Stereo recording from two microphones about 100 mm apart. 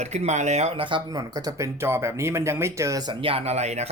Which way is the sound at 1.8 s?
25° right (ahead or behind).